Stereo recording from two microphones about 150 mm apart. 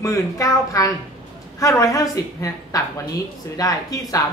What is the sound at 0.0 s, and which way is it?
A woman's voice, 20° left (ahead or behind).